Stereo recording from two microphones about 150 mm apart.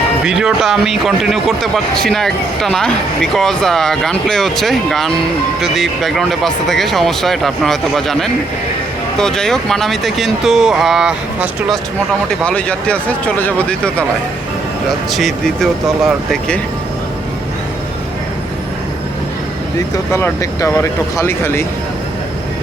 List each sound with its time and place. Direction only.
0.3 s speech: 5° right (ahead or behind)
12.5 s speech: 5° left (ahead or behind)
20.1 s speech: 20° left (ahead or behind)